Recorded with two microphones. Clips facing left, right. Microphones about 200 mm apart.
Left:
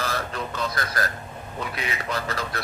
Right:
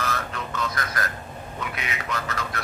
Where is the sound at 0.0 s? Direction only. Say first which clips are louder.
Left 1 dB; 35° left (ahead or behind).